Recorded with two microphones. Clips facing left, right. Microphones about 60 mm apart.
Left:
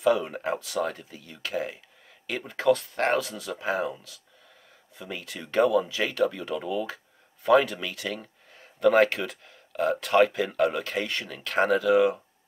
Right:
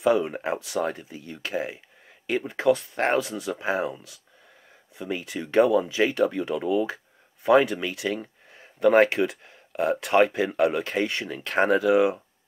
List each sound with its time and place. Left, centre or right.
0.0 s speech: centre
2.5 s speech: centre
5.2 s speech: centre